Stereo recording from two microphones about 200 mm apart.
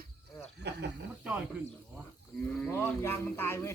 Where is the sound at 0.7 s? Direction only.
55° right (ahead or behind).